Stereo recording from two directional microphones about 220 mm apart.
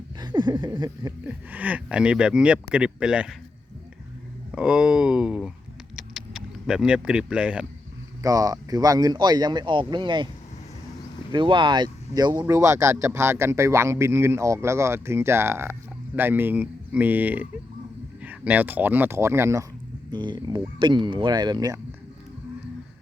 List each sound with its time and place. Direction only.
0.2 s a sound: 20° right (ahead or behind)
1.2 s speech: 5° right (ahead or behind)
4.5 s speech: 5° right (ahead or behind)
6.0 s a sound: centre (ahead or behind)
8.2 s speech: 15° right (ahead or behind)
11.3 s speech: 20° right (ahead or behind)